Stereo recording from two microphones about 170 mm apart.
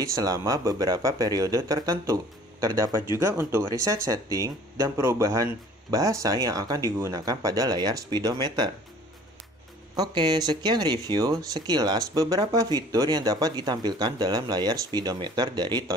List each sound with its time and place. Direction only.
0.0 s speech: 20° right (ahead or behind)
9.9 s speech: 25° right (ahead or behind)